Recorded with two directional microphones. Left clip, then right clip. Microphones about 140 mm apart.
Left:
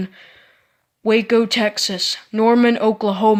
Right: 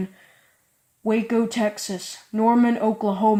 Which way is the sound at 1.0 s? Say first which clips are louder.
Left 7 dB; 20° left (ahead or behind).